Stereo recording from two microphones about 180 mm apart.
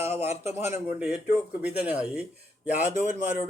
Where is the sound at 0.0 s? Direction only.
15° right (ahead or behind).